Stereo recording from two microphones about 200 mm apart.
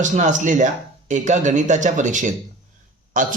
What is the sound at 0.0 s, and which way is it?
Speech, 40° right (ahead or behind).